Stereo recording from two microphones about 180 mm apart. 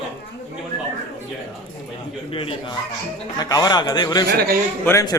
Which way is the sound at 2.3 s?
30° left (ahead or behind).